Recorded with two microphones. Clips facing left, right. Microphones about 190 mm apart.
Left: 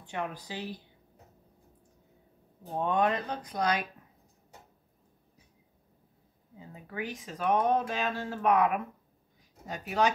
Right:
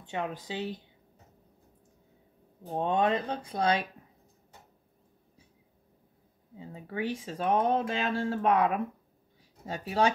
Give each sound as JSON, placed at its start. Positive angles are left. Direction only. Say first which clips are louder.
{"t": 0.0, "sound": "speech", "louder": "right 2 dB", "side_deg": -20}
{"t": 2.8, "sound": "speech", "louder": "right 1 dB", "side_deg": -25}
{"t": 6.6, "sound": "speech", "louder": "right 4 dB", "side_deg": -30}